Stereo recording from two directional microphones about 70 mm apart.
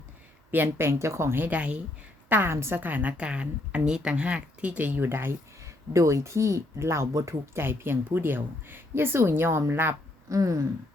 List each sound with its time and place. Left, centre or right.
0.5 s a woman's voice: right
1.5 s speech: centre
2.3 s a woman's voice: right
7.5 s a woman's voice: right
10.2 s a sound: right